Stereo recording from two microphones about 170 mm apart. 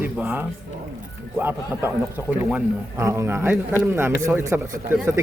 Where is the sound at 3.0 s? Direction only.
15° right (ahead or behind).